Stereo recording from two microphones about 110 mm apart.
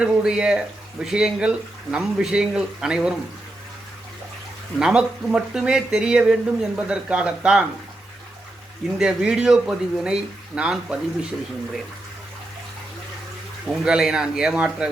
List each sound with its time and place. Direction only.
0.0 s speech: 10° right (ahead or behind)
4.8 s speech: 10° right (ahead or behind)
9.0 s speech: 5° right (ahead or behind)
13.7 s speech: 5° right (ahead or behind)